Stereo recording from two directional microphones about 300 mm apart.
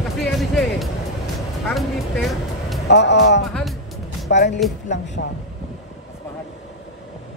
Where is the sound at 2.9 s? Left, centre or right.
Left.